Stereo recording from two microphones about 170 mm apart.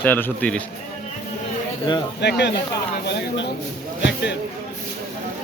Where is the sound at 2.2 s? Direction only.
85° left.